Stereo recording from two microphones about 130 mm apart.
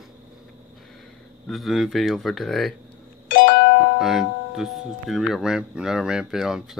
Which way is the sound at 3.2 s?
90° left.